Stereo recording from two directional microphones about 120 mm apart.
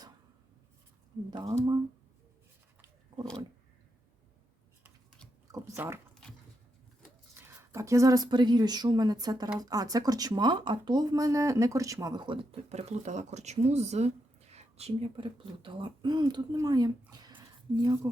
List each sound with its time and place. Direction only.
1.3 s speech: 35° right (ahead or behind)
5.5 s speech: 30° right (ahead or behind)
7.3 s speech: 20° right (ahead or behind)
12.2 s speech: 45° right (ahead or behind)
12.6 s speech: 65° right (ahead or behind)
15.1 s speech: 45° right (ahead or behind); by 18.1 s 30° right (ahead or behind)